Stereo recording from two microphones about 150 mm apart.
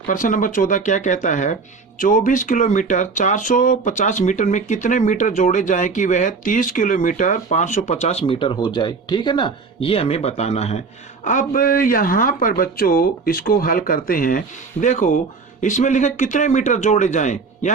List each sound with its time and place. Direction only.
0.1 s speech: 60° left (ahead or behind)